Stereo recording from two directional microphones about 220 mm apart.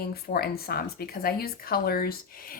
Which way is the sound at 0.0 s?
45° left (ahead or behind).